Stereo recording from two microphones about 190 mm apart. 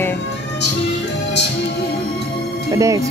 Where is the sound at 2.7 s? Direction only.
15° right (ahead or behind).